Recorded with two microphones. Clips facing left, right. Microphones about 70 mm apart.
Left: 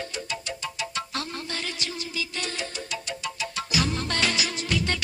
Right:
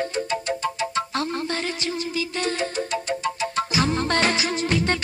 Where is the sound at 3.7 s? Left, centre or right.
Right.